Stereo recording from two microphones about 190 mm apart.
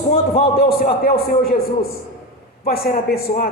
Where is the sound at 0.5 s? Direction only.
50° left (ahead or behind).